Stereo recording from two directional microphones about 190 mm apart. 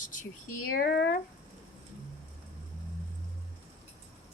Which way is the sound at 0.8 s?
60° left (ahead or behind).